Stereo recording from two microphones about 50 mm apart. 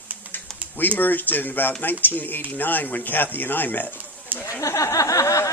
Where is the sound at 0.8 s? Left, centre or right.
Left.